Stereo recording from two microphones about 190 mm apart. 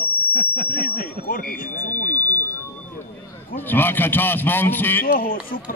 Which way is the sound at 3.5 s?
10° left (ahead or behind).